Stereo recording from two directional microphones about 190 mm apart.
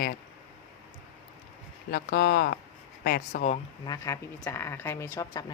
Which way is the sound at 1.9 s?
55° left (ahead or behind).